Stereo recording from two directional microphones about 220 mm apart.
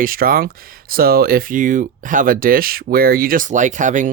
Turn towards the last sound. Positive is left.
turn(degrees=-35)  # may be behind; listen again after turning